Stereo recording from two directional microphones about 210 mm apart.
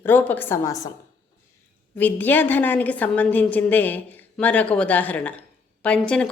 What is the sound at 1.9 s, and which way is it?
A woman's voice, 10° left (ahead or behind).